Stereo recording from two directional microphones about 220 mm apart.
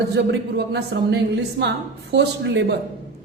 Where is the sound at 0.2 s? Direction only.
50° right (ahead or behind).